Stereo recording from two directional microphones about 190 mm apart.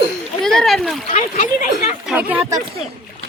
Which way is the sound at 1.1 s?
40° left (ahead or behind).